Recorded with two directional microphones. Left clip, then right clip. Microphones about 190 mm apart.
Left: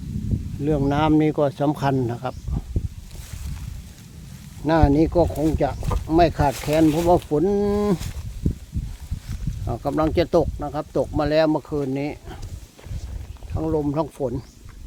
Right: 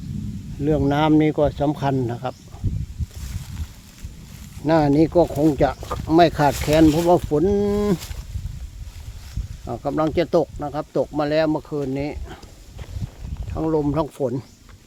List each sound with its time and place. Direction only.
0.6 s speech: 10° right (ahead or behind)
4.6 s speech: 5° right (ahead or behind)
5.3 s speech: 20° right (ahead or behind); by 7.9 s centre (ahead or behind)
9.6 s speech: 5° right (ahead or behind)
13.5 s speech: 20° right (ahead or behind)